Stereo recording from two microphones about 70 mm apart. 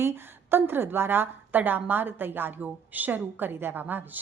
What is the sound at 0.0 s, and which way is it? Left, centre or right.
A woman's voice, right.